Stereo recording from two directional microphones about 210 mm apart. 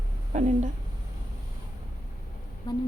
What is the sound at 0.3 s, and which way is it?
Speech, 35° right (ahead or behind).